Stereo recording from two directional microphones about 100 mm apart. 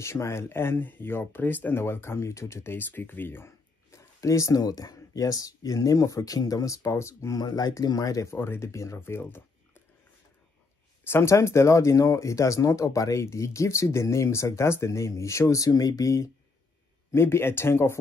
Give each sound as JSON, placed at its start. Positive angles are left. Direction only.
{"t": 0.0, "sound": "speech", "side_deg": 30}
{"t": 11.1, "sound": "speech", "side_deg": 25}